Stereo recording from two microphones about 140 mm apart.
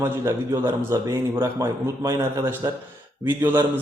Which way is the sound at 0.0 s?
15° right (ahead or behind).